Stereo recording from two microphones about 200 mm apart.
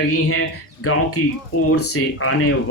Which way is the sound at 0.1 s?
90° left.